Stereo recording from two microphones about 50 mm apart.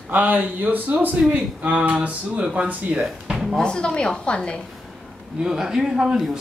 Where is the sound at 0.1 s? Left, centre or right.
Right.